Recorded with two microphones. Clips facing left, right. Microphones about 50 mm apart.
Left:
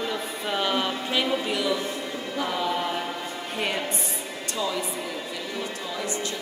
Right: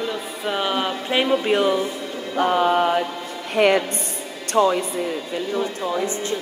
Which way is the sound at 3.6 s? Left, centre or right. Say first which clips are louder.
Right 12 dB; right.